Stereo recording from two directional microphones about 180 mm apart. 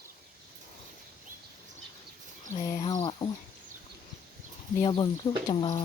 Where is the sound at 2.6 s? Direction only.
25° left (ahead or behind).